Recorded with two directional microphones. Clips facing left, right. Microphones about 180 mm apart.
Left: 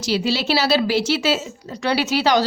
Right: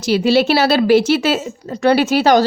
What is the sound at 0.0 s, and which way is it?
A woman's voice, 55° right (ahead or behind).